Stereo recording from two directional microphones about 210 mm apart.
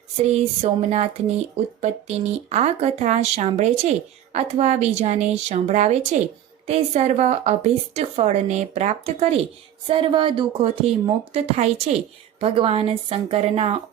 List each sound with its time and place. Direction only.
0.3 s speech: 30° right (ahead or behind)